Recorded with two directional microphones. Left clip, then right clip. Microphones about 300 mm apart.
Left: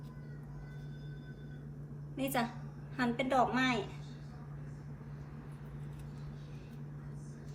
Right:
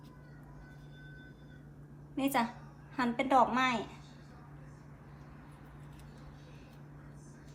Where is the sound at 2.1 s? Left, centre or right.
Centre.